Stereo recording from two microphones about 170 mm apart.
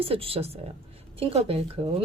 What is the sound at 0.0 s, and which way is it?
Speech, 35° right (ahead or behind).